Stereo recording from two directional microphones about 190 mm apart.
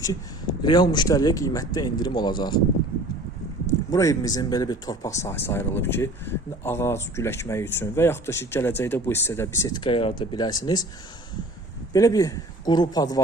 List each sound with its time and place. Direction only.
0.0 s speech: 20° left (ahead or behind)
3.9 s speech: 15° left (ahead or behind)
11.9 s speech: 15° left (ahead or behind)